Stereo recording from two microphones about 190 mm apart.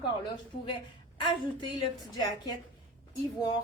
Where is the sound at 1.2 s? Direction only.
25° left (ahead or behind).